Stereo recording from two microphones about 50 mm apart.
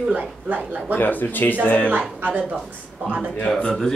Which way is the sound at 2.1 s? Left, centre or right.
Right.